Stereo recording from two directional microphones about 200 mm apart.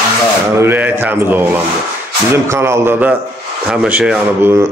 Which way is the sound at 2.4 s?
15° right (ahead or behind).